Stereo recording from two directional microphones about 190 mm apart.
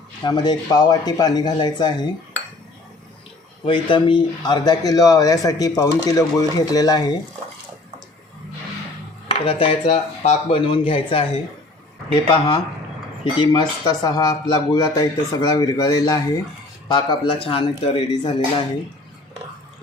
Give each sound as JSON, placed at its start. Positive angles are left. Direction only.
{"t": 0.3, "sound": "speech", "side_deg": 20}
{"t": 3.7, "sound": "speech", "side_deg": 25}
{"t": 9.3, "sound": "speech", "side_deg": 30}
{"t": 12.3, "sound": "speech", "side_deg": 25}